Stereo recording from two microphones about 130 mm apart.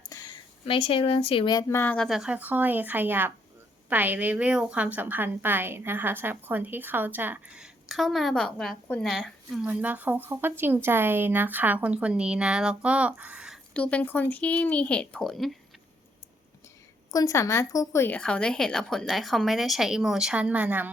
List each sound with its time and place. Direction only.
0.0 s a sound: 30° left (ahead or behind)
0.6 s speech: 45° left (ahead or behind)
1.6 s speech: 15° left (ahead or behind)
2.0 s a woman's voice: 5° right (ahead or behind)
9.6 s a woman's voice: 10° right (ahead or behind)
13.7 s speech: 10° left (ahead or behind)
17.1 s a woman's voice: 25° left (ahead or behind)
18.2 s a woman's voice: 5° left (ahead or behind); by 20.9 s 15° right (ahead or behind)